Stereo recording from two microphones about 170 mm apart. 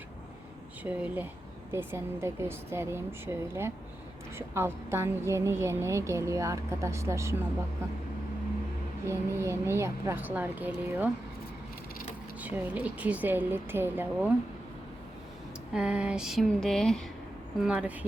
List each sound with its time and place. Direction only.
0.8 s a woman's voice: 10° right (ahead or behind)
9.0 s a woman's voice: 15° right (ahead or behind)
12.4 s a woman's voice: 10° right (ahead or behind)
15.7 s a sound: 5° right (ahead or behind)
17.6 s a woman's voice: 5° right (ahead or behind)